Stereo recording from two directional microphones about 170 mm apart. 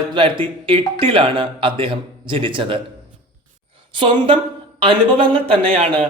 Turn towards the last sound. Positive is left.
turn(degrees=-35)  # may be behind; listen again after turning